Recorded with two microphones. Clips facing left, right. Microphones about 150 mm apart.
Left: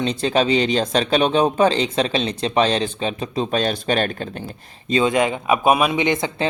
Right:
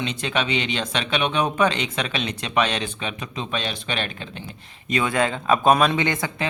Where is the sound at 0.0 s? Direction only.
35° left (ahead or behind).